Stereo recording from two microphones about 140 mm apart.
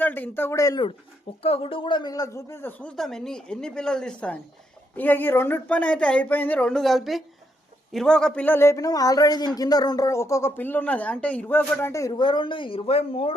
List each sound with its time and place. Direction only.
0.0 s speech: 15° left (ahead or behind)
1.4 s a man's voice: 45° left (ahead or behind); by 12.2 s 20° left (ahead or behind)
12.2 s speech: 35° left (ahead or behind)